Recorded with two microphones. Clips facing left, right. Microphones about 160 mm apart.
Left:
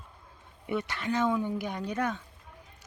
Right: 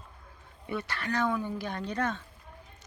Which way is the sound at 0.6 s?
20° left (ahead or behind).